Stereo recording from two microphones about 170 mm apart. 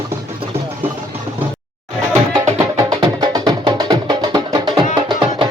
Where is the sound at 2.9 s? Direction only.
25° right (ahead or behind).